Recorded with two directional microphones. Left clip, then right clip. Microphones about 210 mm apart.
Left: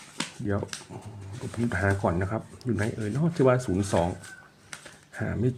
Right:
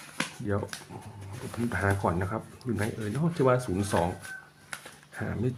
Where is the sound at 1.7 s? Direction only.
20° left (ahead or behind).